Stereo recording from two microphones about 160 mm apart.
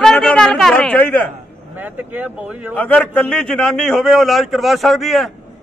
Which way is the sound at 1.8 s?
10° right (ahead or behind).